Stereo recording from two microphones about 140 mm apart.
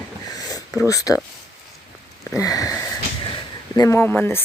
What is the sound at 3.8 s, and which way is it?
Speech, 15° left (ahead or behind).